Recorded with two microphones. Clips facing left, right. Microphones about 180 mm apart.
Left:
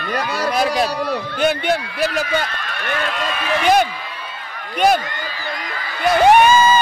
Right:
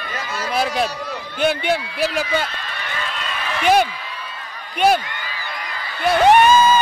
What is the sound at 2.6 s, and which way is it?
Speech, 65° left (ahead or behind).